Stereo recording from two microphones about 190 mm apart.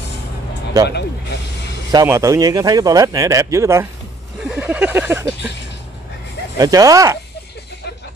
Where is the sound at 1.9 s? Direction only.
15° right (ahead or behind).